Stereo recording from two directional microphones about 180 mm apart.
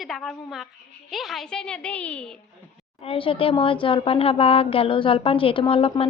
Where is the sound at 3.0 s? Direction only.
30° left (ahead or behind).